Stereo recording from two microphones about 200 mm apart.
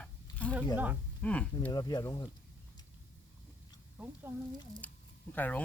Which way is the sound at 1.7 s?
20° left (ahead or behind).